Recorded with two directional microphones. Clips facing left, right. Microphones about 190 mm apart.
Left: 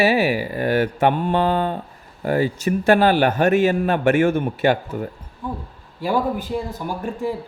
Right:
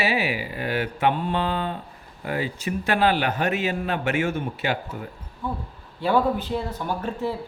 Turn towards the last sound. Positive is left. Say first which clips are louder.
# left 2 dB
turn(degrees=10)  # may be behind; listen again after turning